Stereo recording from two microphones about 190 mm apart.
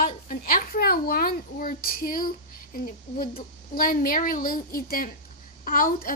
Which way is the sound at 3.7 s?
50° left (ahead or behind).